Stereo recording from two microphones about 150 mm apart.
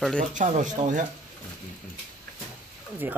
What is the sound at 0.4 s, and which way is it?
Speech, 60° right (ahead or behind).